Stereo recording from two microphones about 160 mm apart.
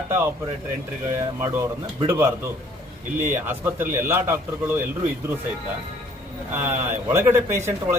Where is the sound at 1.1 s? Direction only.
15° right (ahead or behind).